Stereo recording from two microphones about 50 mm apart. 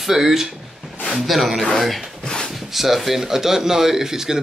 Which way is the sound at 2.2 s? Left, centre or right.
Centre.